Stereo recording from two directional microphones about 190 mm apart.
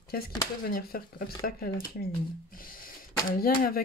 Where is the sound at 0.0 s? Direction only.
55° left (ahead or behind).